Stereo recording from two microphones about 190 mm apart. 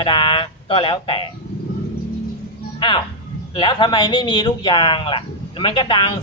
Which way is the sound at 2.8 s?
25° left (ahead or behind).